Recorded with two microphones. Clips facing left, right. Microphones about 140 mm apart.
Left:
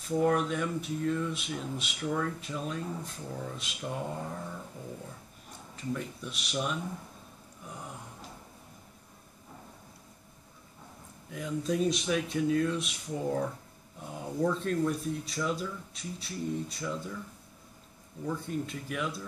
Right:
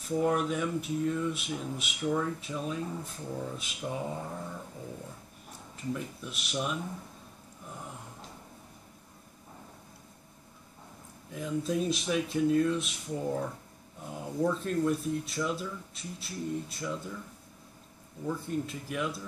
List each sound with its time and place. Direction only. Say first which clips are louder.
0.1 s speech: left 1 dB; 5° right (ahead or behind)
5.8 s speech: even; centre (ahead or behind)
11.2 s speech: even; centre (ahead or behind)
18.2 s speech: right 1 dB; centre (ahead or behind)